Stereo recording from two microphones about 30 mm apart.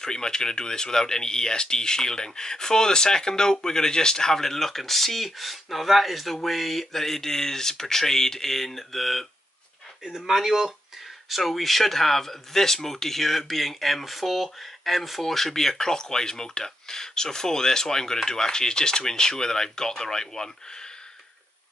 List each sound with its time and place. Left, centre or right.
0.0 s speech: left; by 9.2 s centre
10.2 s speech: centre
11.2 s speech: centre